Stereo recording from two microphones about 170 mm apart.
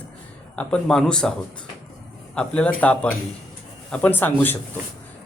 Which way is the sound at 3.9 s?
10° left (ahead or behind).